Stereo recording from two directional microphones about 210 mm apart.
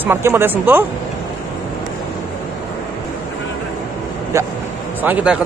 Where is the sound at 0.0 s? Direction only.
10° right (ahead or behind).